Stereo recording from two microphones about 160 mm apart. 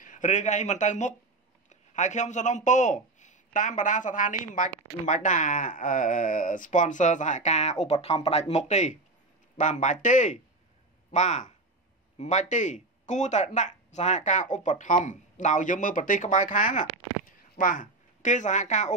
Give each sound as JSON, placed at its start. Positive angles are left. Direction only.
{"t": 0.0, "sound": "a man's voice", "side_deg": 50}